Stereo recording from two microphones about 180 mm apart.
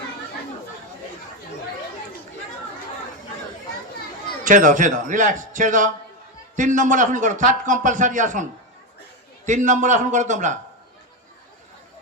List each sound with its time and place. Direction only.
4.4 s a man's voice: 45° right (ahead or behind)
9.5 s a man's voice: 45° right (ahead or behind)